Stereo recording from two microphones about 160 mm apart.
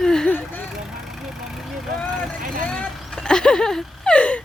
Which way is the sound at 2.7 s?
5° left (ahead or behind).